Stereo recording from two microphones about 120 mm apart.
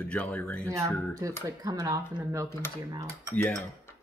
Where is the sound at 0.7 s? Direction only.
25° right (ahead or behind).